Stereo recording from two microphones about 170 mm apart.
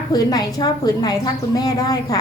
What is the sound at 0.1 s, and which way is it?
A woman's voice, 25° left (ahead or behind).